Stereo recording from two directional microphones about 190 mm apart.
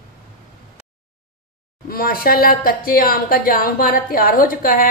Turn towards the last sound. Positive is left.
turn(degrees=50)  # may be behind; listen again after turning